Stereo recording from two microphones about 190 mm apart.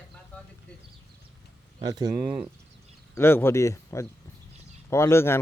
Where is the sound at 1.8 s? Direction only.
20° right (ahead or behind).